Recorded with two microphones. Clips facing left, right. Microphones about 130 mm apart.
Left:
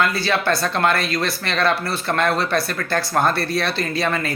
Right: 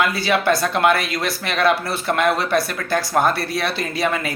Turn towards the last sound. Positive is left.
turn(degrees=-10)  # may be behind; listen again after turning